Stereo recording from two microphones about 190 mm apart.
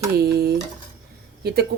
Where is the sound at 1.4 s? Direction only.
55° right (ahead or behind).